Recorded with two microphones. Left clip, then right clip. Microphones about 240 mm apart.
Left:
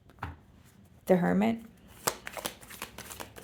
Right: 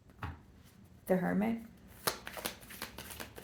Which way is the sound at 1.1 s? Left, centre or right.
Left.